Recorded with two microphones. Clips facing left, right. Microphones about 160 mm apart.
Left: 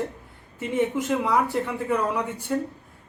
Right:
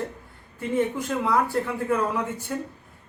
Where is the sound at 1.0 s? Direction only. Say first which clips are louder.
Left 1 dB; 5° left (ahead or behind).